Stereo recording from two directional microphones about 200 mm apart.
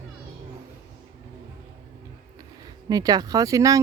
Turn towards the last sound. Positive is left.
turn(degrees=-15)  # may be behind; listen again after turning